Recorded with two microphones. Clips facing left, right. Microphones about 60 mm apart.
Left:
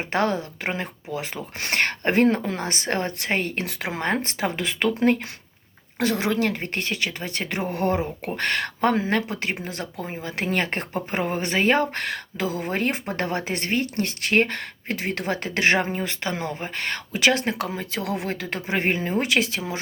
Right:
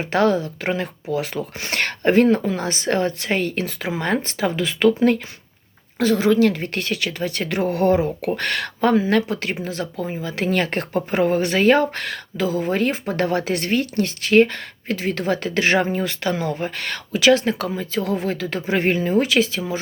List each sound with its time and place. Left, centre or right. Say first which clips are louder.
0.0 s speech: right 5 dB; left
2.2 s speech: right 3 dB; left
2.6 s speech: right 5 dB; left
3.6 s speech: right 4 dB; left
4.0 s speech: right 3 dB; left
6.5 s speech: right 3 dB; left
12.7 s speech: right 4 dB; left
17.7 s speech: right 5 dB; left
18.3 s speech: right 5 dB; left